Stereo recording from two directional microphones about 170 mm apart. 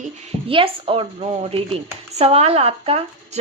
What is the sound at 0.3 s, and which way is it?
Speech, 30° right (ahead or behind).